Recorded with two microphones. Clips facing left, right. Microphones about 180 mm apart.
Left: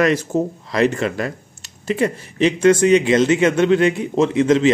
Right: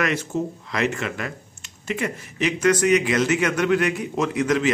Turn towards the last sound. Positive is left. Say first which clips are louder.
# left 7 dB
turn(degrees=25)  # may be behind; listen again after turning